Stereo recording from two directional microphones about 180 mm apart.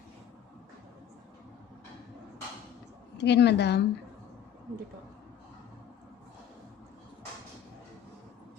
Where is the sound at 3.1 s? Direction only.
70° left (ahead or behind).